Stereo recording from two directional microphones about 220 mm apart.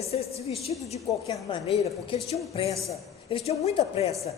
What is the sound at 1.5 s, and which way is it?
A woman's voice, 30° left (ahead or behind).